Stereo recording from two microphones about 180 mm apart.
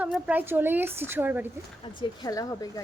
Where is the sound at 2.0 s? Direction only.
20° left (ahead or behind).